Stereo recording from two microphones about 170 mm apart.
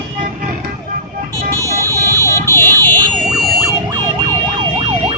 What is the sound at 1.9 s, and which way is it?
Emergency vehicle, 15° left (ahead or behind).